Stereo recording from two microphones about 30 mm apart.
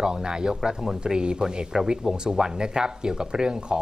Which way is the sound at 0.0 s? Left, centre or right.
Right.